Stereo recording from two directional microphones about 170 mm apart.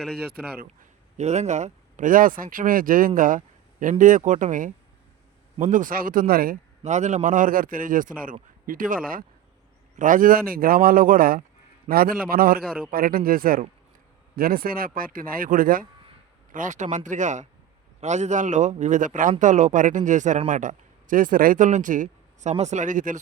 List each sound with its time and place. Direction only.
0.5 s speech: 55° right (ahead or behind)
6.8 s speech: 45° right (ahead or behind); by 12.6 s 60° right (ahead or behind)
12.6 s a man's voice: 5° left (ahead or behind)
12.9 s speech: 60° right (ahead or behind)